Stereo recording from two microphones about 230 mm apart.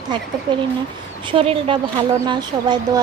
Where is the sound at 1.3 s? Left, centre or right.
Right.